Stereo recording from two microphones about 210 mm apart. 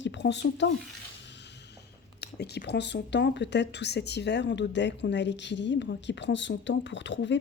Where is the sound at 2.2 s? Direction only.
50° left (ahead or behind).